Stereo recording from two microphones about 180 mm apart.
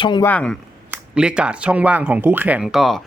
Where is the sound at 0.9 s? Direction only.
5° right (ahead or behind).